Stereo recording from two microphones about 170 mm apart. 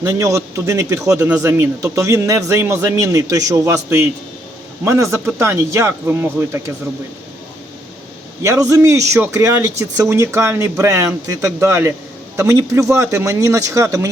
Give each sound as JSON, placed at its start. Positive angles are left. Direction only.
{"t": 0.0, "sound": "a man's voice", "side_deg": -20}
{"t": 8.4, "sound": "a man's voice", "side_deg": -20}